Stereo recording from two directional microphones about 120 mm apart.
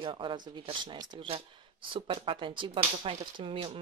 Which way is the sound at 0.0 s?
40° right (ahead or behind).